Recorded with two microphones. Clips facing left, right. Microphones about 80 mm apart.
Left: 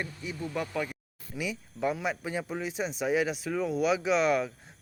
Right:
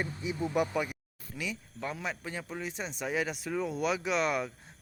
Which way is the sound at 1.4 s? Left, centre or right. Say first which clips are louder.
Left 5 dB; centre.